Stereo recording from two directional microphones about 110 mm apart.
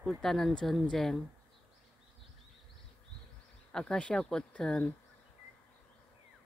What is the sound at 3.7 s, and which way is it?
Speech, 5° left (ahead or behind).